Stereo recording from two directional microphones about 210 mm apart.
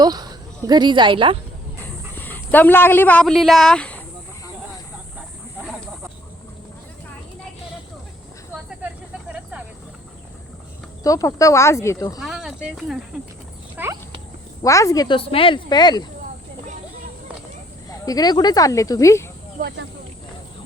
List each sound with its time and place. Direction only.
0.0 s speech: 20° right (ahead or behind)
1.8 s speech: 10° left (ahead or behind)
9.3 s snake: 5° right (ahead or behind)
11.0 s speech: 15° left (ahead or behind)
12.2 s snake: centre (ahead or behind)
13.8 s horse: 10° right (ahead or behind)
14.6 s speech: 15° left (ahead or behind)
17.8 s speech: 15° left (ahead or behind)
19.6 s speech: 40° right (ahead or behind)